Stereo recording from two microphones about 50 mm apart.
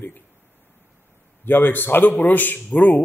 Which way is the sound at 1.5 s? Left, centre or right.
Left.